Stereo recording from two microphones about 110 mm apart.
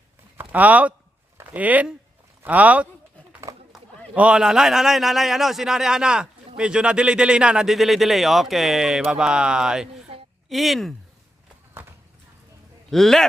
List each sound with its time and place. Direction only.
0.3 s a man's voice: 15° right (ahead or behind); by 10.9 s centre (ahead or behind)
11.7 s run: 20° right (ahead or behind)
12.9 s a man's voice: 5° left (ahead or behind)